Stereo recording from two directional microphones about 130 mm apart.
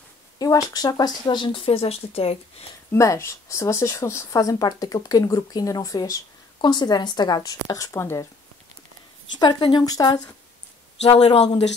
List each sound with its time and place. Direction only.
0.4 s speech: 30° left (ahead or behind); by 2.3 s 50° left (ahead or behind)
2.9 s a woman's voice: 20° left (ahead or behind)
9.4 s speech: 35° left (ahead or behind)
11.0 s a man's voice: 55° left (ahead or behind)